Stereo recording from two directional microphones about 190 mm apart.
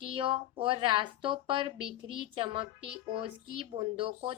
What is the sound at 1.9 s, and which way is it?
Speech, 90° left.